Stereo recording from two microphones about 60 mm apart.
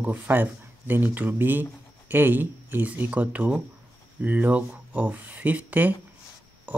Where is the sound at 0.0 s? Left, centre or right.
Right.